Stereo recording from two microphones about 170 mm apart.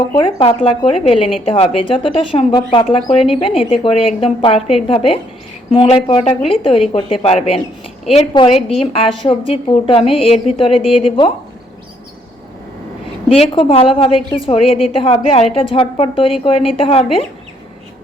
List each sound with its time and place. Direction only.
0.2 s speech: 30° left (ahead or behind)
13.2 s speech: 35° left (ahead or behind)